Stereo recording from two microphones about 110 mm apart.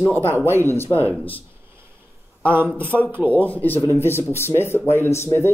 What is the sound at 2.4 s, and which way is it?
Speech, 20° right (ahead or behind).